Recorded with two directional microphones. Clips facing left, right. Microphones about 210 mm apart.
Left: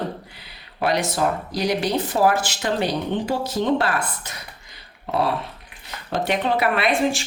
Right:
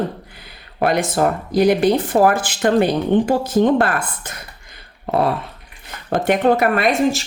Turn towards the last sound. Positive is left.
turn(degrees=-45)  # may be behind; listen again after turning